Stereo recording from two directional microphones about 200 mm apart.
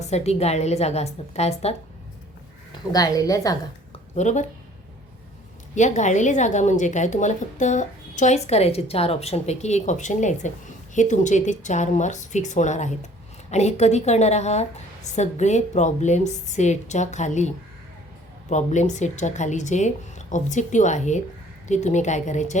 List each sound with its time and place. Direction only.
0.0 s a woman's voice: 35° left (ahead or behind)
2.9 s a woman's voice: 20° left (ahead or behind)
4.1 s a woman's voice: 35° left (ahead or behind)
5.7 s a woman's voice: 35° left (ahead or behind)
18.5 s a woman's voice: 35° left (ahead or behind)